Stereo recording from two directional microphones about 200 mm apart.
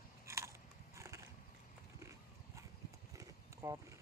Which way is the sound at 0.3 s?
15° right (ahead or behind).